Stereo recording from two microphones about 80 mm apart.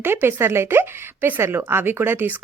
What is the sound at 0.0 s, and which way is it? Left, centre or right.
Speech, right.